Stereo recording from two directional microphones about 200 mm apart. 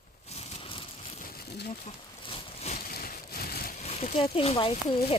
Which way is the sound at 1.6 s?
30° left (ahead or behind).